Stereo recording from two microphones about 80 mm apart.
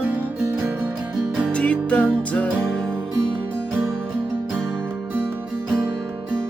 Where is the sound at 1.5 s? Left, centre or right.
Centre.